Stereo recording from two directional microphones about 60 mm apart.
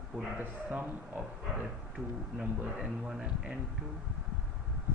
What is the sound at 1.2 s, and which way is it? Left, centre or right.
Speech, centre.